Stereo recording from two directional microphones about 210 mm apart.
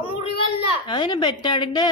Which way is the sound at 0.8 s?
20° left (ahead or behind).